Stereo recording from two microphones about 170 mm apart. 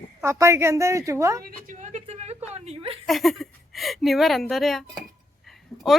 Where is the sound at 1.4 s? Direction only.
50° right (ahead or behind).